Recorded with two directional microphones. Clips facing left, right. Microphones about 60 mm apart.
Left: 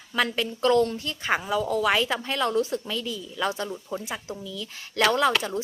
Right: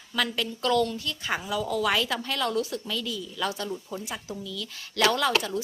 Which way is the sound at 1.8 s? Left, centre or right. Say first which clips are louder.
Left 2 dB; left.